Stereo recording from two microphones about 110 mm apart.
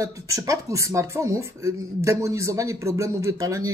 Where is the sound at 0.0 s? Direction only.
30° right (ahead or behind).